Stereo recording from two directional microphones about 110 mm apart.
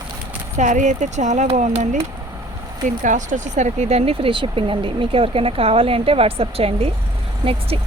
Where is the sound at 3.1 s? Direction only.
90° right.